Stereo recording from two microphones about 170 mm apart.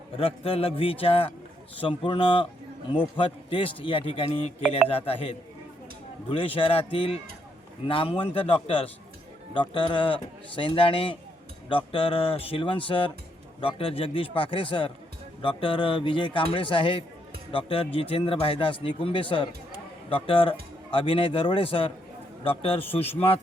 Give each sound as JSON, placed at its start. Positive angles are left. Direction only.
{"t": 0.2, "sound": "speech", "side_deg": 35}